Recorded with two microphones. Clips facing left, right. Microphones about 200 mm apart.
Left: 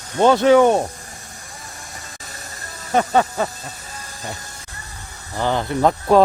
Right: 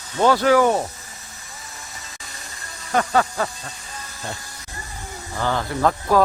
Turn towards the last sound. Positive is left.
turn(degrees=20)  # may be behind; listen again after turning